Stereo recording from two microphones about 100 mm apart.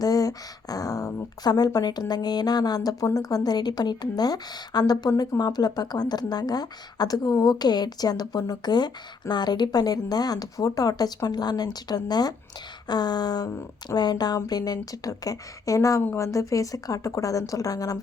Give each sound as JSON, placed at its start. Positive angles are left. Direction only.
{"t": 0.0, "sound": "speech", "side_deg": 40}